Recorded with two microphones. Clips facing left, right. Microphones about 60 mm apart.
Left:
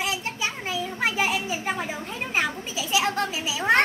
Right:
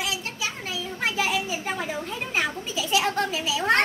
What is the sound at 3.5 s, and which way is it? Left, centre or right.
Speech, centre.